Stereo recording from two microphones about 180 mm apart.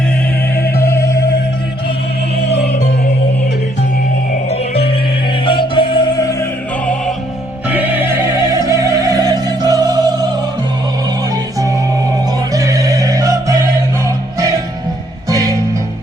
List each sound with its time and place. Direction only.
0.9 s music: 15° left (ahead or behind)
2.4 s music: 65° left (ahead or behind)
4.4 s music: 35° left (ahead or behind); by 6.5 s 20° left (ahead or behind)
7.7 s opera: 10° right (ahead or behind)
12.5 s music: 20° right (ahead or behind)